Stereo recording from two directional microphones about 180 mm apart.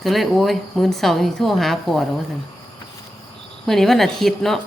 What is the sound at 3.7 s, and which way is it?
Speech, centre (ahead or behind).